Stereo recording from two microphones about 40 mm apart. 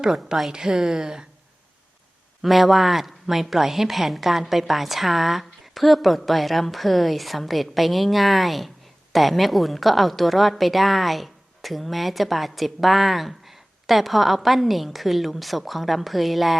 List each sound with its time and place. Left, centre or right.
0.5 s a woman's voice: centre
2.4 s a woman's voice: centre